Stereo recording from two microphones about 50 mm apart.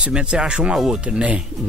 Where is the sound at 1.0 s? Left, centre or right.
Right.